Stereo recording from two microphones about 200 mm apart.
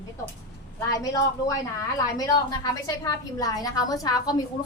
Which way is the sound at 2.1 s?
20° left (ahead or behind).